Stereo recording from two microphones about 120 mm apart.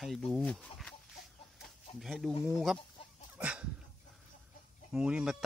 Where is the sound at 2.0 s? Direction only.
Centre (ahead or behind).